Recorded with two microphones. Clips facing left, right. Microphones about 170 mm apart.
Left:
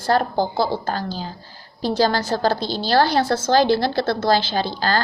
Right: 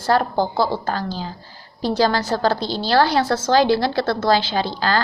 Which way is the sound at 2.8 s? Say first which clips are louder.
Even; 45° left (ahead or behind).